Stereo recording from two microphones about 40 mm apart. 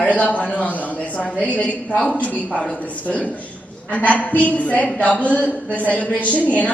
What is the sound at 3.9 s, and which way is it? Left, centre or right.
A woman's voice, left.